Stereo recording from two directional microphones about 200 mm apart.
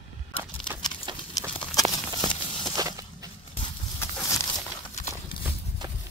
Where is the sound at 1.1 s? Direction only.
25° right (ahead or behind).